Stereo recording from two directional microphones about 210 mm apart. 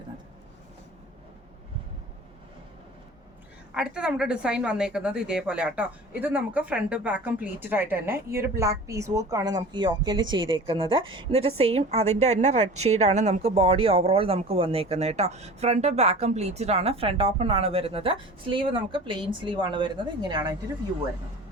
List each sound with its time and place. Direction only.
3.8 s a woman's voice: 5° right (ahead or behind); by 20.6 s 20° right (ahead or behind)